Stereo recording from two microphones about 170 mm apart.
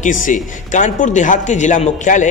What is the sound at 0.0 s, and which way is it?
Speech, 50° left (ahead or behind).